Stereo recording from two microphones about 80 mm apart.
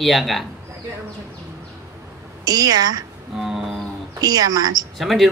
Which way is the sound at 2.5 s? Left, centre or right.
Right.